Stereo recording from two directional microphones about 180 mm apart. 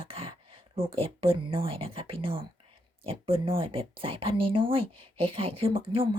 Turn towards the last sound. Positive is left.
turn(degrees=-30)  # may be behind; listen again after turning